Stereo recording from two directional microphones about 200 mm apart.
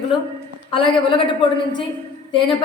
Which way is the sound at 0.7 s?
25° left (ahead or behind).